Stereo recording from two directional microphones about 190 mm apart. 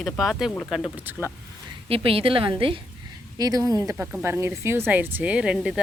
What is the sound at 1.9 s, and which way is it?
A woman's voice, 30° right (ahead or behind).